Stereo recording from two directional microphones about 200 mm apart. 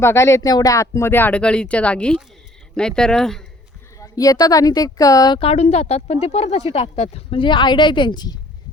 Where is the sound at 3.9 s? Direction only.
15° left (ahead or behind).